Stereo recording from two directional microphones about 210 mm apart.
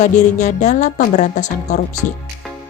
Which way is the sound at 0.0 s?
35° left (ahead or behind).